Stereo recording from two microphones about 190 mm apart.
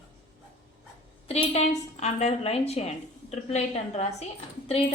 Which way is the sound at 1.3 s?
35° left (ahead or behind).